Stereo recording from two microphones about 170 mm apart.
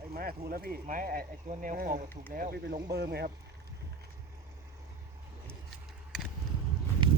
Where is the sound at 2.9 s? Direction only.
70° right (ahead or behind).